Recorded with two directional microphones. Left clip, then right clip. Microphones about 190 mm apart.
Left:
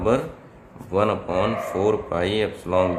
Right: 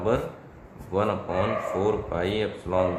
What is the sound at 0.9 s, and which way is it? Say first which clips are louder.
Speech: left 4 dB; 35° left (ahead or behind).